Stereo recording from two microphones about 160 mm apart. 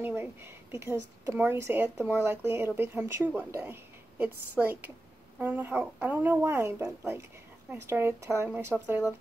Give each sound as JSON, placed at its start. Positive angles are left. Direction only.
{"t": 0.0, "sound": "speech", "side_deg": -15}